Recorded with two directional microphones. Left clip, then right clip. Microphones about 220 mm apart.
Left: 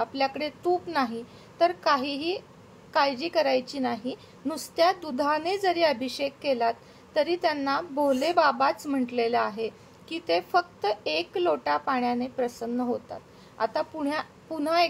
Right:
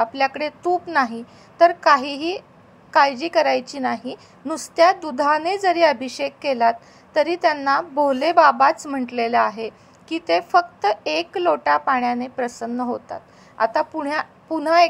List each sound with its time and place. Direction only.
0.0 s a woman's voice: 15° right (ahead or behind)